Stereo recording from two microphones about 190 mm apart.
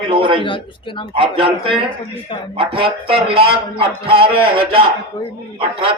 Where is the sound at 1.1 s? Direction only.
30° right (ahead or behind).